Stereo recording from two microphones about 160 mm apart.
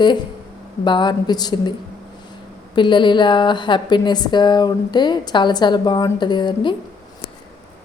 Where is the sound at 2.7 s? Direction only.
30° left (ahead or behind).